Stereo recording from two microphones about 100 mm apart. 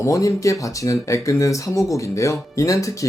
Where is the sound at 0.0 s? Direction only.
30° left (ahead or behind).